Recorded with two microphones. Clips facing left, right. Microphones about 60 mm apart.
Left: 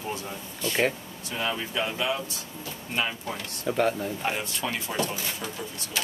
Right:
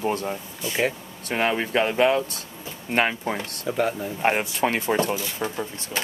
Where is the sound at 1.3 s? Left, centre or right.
Right.